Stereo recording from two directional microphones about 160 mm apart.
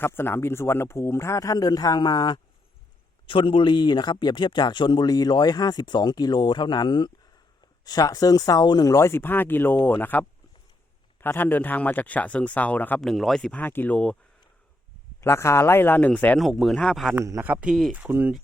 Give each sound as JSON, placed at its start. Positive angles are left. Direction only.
{"t": 0.0, "sound": "a man's voice", "side_deg": 15}
{"t": 15.2, "sound": "a man's voice", "side_deg": 15}
{"t": 17.2, "sound": "speech", "side_deg": -15}